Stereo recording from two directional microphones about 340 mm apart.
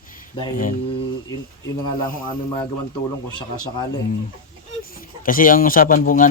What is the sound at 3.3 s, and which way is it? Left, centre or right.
Speech, centre.